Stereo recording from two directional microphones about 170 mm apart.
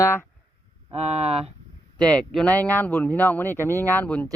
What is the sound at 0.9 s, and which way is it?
Speech, 40° right (ahead or behind).